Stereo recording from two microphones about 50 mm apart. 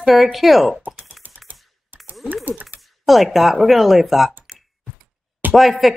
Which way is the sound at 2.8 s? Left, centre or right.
Centre.